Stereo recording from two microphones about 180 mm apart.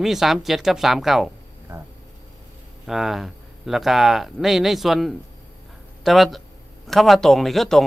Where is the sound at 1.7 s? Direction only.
15° right (ahead or behind).